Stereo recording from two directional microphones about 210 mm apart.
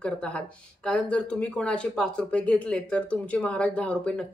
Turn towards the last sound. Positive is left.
turn(degrees=5)  # may be behind; listen again after turning